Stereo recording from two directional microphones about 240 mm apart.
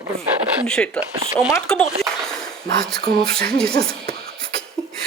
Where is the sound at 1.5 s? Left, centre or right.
Centre.